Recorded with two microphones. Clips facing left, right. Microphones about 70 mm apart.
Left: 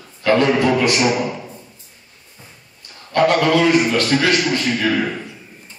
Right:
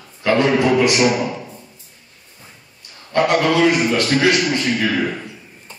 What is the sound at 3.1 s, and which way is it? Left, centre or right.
A man's voice, right.